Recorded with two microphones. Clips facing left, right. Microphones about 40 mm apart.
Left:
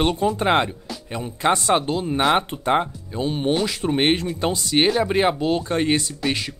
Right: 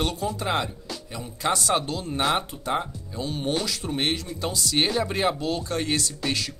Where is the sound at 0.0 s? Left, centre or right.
Left.